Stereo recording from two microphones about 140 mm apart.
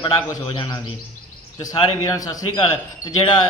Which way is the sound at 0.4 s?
35° left (ahead or behind).